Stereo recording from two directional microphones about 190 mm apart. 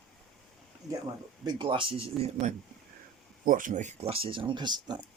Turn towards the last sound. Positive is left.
turn(degrees=-25)  # may be behind; listen again after turning